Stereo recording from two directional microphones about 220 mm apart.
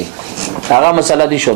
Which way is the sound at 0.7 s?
25° right (ahead or behind).